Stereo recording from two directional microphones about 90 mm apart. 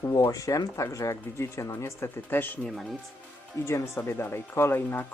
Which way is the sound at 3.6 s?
30° left (ahead or behind).